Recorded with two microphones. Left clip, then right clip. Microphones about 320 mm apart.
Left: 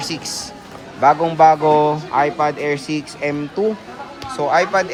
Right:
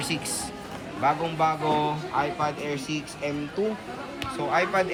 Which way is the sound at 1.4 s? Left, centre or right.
Left.